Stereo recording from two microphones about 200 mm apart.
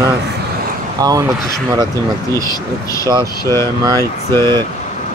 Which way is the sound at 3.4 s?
15° left (ahead or behind).